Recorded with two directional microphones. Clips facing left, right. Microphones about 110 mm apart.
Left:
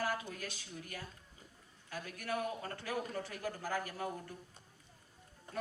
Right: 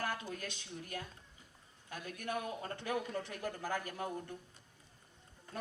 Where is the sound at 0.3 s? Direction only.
20° right (ahead or behind).